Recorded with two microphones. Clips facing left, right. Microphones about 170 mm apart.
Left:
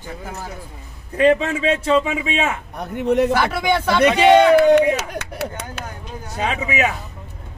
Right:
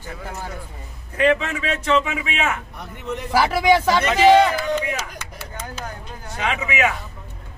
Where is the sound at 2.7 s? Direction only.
65° left (ahead or behind).